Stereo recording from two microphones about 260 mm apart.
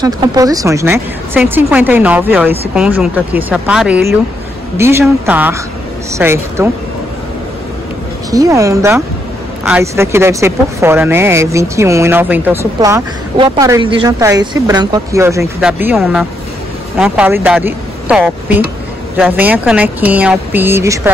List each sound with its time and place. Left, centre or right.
0.0 s speech: centre
8.3 s speech: centre